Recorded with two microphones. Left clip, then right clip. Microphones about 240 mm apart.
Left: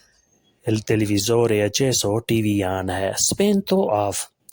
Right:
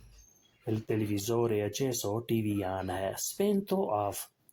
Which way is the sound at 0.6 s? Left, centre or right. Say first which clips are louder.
Left 11 dB; left.